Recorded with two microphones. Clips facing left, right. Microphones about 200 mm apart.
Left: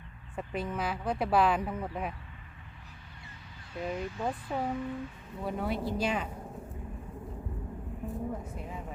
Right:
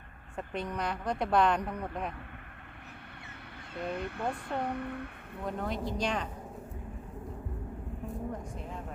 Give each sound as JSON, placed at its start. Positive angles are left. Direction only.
{"t": 0.3, "sound": "speech", "side_deg": 5}
{"t": 3.8, "sound": "speech", "side_deg": -60}
{"t": 5.4, "sound": "a woman's voice", "side_deg": 5}
{"t": 8.0, "sound": "vehicle", "side_deg": 5}